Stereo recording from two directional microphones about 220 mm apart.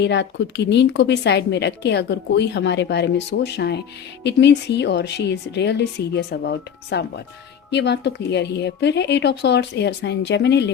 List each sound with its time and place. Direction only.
0.0 s a woman's voice: 50° left (ahead or behind)